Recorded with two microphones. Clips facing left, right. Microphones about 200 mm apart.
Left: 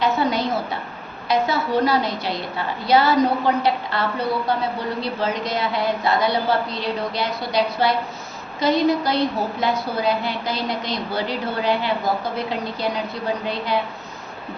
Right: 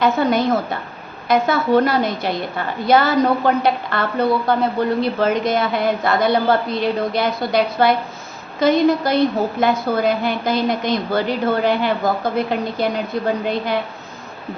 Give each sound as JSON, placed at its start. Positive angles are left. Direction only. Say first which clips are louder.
{"t": 0.0, "sound": "a woman's voice", "louder": "right 4 dB", "side_deg": -50}